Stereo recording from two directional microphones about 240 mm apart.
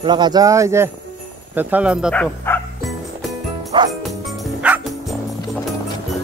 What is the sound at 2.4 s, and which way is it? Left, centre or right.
Music, centre.